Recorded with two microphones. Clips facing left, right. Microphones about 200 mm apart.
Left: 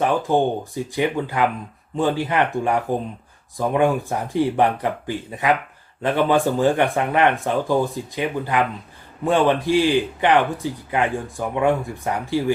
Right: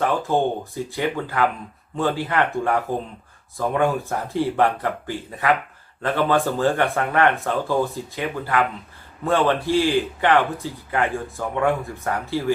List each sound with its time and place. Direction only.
0.0 s a man's voice: 15° left (ahead or behind)